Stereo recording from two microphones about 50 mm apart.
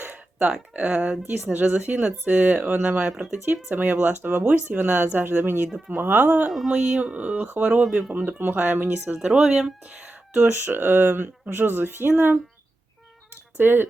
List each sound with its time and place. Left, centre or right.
0.7 s speech: right
2.2 s speech: right
3.1 s speech: centre
3.4 s speech: right
6.5 s a sound: centre
7.0 s speech: right
9.8 s a sound: right
10.5 s speech: right
13.3 s cat: right